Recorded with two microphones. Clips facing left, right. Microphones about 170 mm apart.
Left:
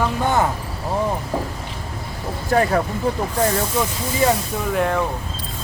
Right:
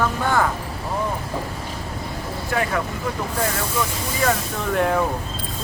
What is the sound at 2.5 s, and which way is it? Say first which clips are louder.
Speech: left 6 dB; 40° left (ahead or behind).